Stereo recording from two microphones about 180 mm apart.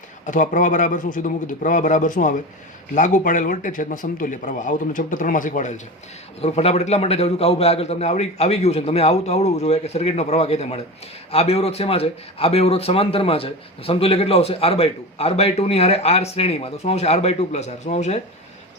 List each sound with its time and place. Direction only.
0.3 s a man's voice: 45° left (ahead or behind)